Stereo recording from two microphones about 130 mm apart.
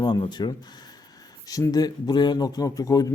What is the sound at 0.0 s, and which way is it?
Speech, 35° left (ahead or behind).